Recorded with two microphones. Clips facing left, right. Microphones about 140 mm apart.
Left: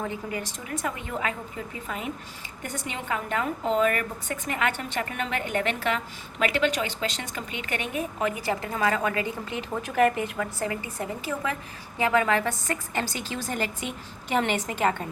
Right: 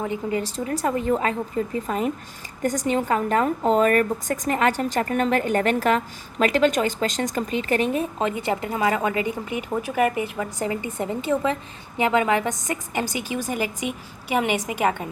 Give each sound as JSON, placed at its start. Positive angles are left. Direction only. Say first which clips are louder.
{"t": 0.3, "sound": "a woman's voice", "louder": "right 8 dB", "side_deg": -30}